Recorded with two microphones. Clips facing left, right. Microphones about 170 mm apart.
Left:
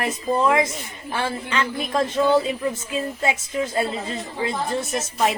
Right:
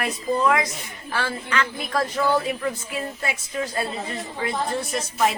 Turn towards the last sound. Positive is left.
turn(degrees=20)  # may be behind; listen again after turning